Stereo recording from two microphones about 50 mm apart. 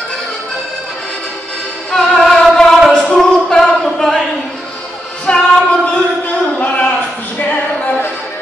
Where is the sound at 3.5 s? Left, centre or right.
Centre.